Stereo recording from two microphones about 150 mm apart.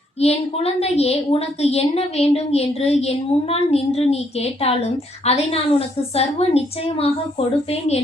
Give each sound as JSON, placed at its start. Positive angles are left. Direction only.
{"t": 0.2, "sound": "a woman's voice", "side_deg": 45}